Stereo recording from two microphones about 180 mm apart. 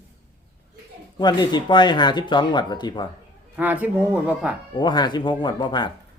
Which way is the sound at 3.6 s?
10° right (ahead or behind).